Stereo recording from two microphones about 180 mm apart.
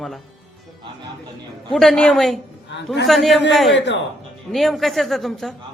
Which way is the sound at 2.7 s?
75° left (ahead or behind).